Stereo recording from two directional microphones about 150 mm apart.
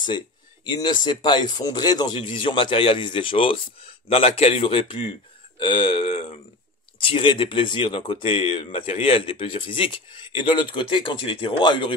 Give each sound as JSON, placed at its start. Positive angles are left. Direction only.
{"t": 0.7, "sound": "speech", "side_deg": 30}